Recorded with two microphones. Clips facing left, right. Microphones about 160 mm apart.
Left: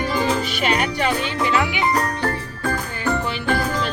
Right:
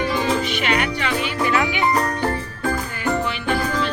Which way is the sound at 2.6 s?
Centre (ahead or behind).